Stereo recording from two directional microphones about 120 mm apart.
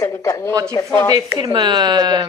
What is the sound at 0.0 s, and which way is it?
Speech, 25° left (ahead or behind).